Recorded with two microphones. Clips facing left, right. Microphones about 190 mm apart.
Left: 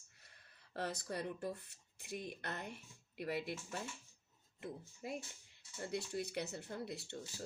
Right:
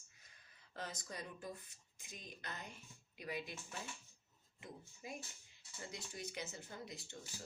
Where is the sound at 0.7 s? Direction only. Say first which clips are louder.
Left 7 dB; 65° left (ahead or behind).